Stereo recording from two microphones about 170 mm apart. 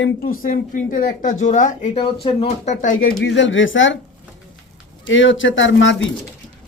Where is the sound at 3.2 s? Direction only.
90° left.